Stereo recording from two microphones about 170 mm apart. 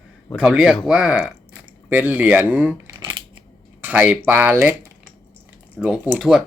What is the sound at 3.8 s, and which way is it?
Speech, 10° right (ahead or behind).